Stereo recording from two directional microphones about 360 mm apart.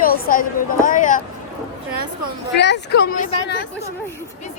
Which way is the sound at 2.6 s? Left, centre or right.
Left.